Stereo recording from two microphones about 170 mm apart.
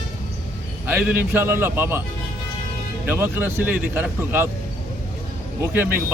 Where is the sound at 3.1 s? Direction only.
15° right (ahead or behind).